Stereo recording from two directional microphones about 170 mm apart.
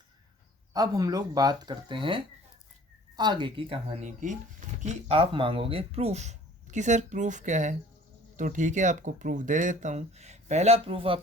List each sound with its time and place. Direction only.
0.7 s speech: 20° right (ahead or behind)